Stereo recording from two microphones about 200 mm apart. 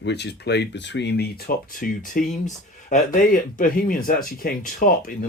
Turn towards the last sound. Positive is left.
turn(degrees=45)  # may be behind; listen again after turning